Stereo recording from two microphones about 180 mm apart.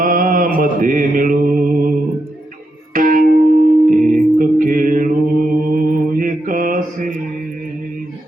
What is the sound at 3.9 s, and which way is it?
Mantra, 50° right (ahead or behind).